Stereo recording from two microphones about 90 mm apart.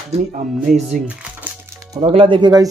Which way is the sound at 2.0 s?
80° right.